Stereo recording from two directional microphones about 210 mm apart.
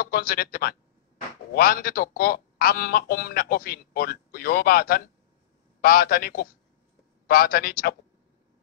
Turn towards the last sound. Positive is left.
turn(degrees=45)  # may be behind; listen again after turning